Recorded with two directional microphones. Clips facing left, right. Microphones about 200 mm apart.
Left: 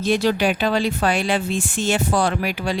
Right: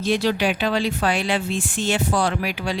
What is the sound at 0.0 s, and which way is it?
Speech, 45° left (ahead or behind).